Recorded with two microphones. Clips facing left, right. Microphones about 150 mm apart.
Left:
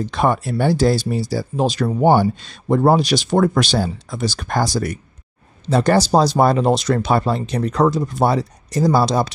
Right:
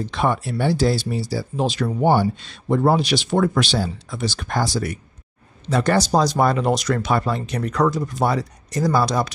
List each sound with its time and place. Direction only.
0.1 s speech: 45° left (ahead or behind)
5.7 s speech: 30° left (ahead or behind)